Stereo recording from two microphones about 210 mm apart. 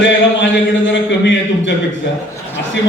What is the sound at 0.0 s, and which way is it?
A man's voice, 60° left (ahead or behind).